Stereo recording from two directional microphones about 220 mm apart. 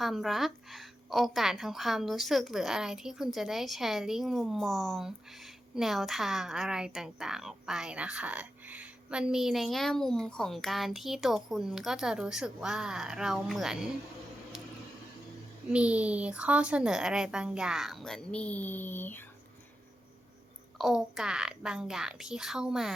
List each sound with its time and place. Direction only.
0.0 s a woman's voice: centre (ahead or behind)
15.7 s a woman's voice: 5° right (ahead or behind)
20.7 s a woman's voice: centre (ahead or behind)